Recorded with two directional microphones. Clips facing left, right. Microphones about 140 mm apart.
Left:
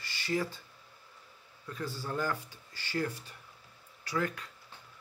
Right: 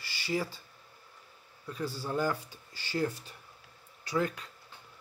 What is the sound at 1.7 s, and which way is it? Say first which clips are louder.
Speech: right 3 dB; 10° right (ahead or behind).